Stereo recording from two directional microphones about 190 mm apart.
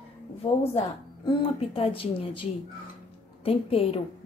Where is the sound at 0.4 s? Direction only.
30° left (ahead or behind).